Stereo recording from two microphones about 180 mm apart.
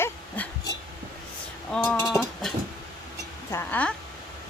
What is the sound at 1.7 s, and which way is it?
Speech, 5° left (ahead or behind).